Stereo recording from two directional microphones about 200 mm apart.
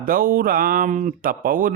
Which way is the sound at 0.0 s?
45° right (ahead or behind).